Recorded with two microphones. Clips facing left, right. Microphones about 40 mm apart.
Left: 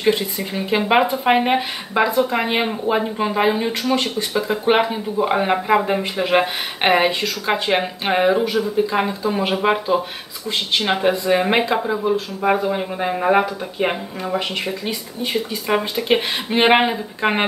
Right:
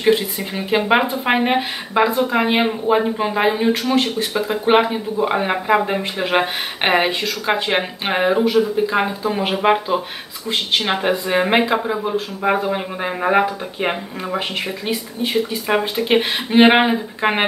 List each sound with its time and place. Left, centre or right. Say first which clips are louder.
0.0 s speech: right 2 dB; centre
0.7 s speech: even; centre